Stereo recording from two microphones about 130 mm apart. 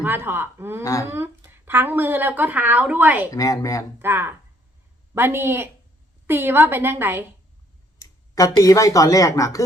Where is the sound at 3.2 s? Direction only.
25° left (ahead or behind).